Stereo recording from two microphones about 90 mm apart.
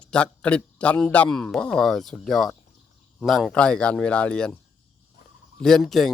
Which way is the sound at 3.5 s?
10° left (ahead or behind).